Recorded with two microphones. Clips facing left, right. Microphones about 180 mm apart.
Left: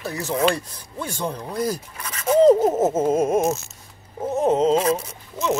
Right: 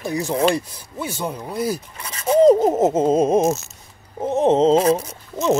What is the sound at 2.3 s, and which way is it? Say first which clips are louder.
Speech: right 1 dB; 15° right (ahead or behind).